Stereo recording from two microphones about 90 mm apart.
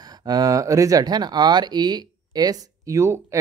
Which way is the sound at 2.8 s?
35° right (ahead or behind).